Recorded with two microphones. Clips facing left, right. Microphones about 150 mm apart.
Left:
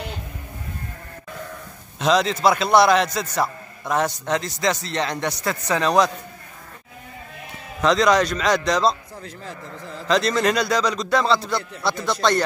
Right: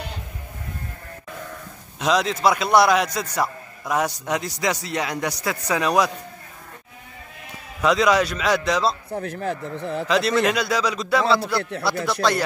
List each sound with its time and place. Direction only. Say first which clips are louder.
2.0 s a man's voice: left 2 dB; 5° right (ahead or behind)
7.8 s a man's voice: left 1 dB; 5° right (ahead or behind)
9.1 s speech: right 10 dB; 65° right (ahead or behind)
10.0 s a man's voice: left 1 dB; 5° right (ahead or behind)